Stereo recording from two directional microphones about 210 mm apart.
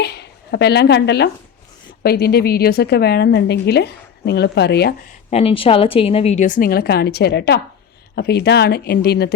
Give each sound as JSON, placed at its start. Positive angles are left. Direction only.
{"t": 0.0, "sound": "a woman's voice", "side_deg": 50}
{"t": 5.3, "sound": "a woman's voice", "side_deg": 25}